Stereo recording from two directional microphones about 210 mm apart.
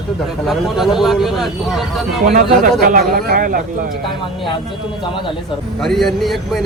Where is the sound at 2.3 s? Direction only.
40° right (ahead or behind).